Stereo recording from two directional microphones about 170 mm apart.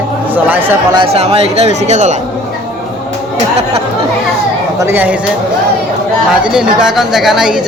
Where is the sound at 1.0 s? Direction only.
35° right (ahead or behind).